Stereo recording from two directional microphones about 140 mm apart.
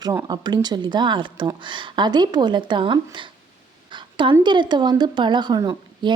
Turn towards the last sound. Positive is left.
turn(degrees=-30)  # may be behind; listen again after turning